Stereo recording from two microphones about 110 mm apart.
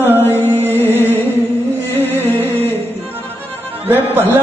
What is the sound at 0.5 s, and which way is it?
Music, 20° right (ahead or behind).